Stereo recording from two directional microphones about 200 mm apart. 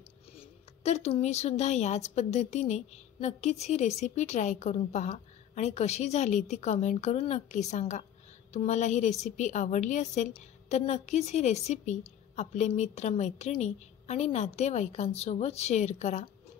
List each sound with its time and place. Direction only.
0.4 s a woman's voice: 35° left (ahead or behind)